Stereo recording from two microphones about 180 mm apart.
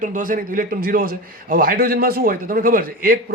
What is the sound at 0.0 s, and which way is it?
A man's voice, 45° right (ahead or behind).